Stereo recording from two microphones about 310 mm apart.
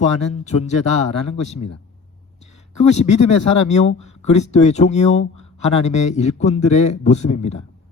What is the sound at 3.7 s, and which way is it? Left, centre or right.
A man's voice, left.